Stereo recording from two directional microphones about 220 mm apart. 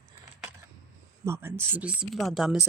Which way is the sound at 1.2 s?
10° right (ahead or behind).